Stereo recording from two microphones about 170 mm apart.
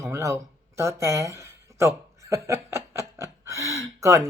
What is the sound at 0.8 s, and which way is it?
Speech, 15° right (ahead or behind).